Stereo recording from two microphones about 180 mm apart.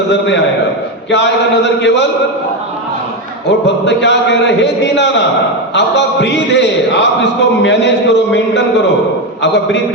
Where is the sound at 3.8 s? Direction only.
75° left (ahead or behind).